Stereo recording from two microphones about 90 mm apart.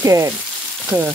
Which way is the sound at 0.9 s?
30° right (ahead or behind).